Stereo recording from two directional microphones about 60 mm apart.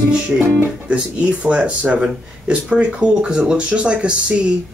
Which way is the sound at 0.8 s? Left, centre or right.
Centre.